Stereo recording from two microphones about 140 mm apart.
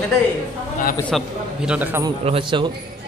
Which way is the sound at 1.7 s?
15° right (ahead or behind).